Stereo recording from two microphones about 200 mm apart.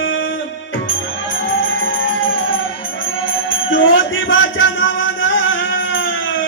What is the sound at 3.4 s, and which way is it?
Music, 75° left (ahead or behind).